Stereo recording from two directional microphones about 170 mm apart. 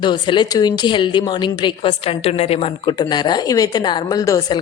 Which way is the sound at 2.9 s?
25° left (ahead or behind).